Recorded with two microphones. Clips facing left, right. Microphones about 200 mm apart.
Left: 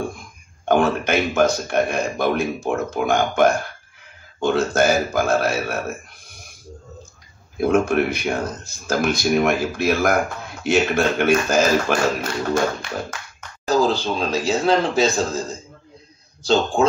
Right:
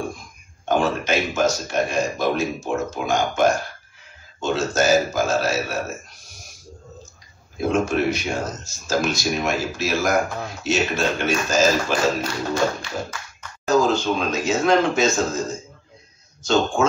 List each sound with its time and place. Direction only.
0.7 s a man's voice: 55° left (ahead or behind)
7.6 s a man's voice: 55° left (ahead or behind)
13.7 s speech: 35° left (ahead or behind)
16.7 s speech: 35° left (ahead or behind)